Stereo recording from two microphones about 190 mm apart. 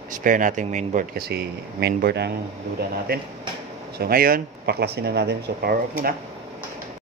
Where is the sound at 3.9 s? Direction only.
55° right (ahead or behind).